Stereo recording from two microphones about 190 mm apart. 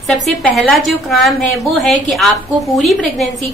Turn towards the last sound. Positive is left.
turn(degrees=0)  # may be behind; listen again after turning